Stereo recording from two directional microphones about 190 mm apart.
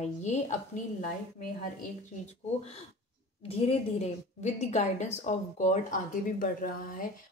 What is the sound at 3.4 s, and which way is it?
A woman's voice, 30° left (ahead or behind).